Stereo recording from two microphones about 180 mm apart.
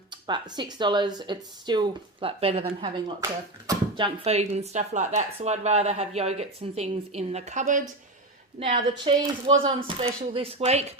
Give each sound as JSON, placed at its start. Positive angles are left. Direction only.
{"t": 0.1, "sound": "speech", "side_deg": -25}
{"t": 8.5, "sound": "speech", "side_deg": -30}